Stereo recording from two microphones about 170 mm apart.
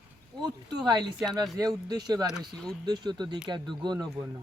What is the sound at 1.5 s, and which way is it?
Speech, 20° right (ahead or behind).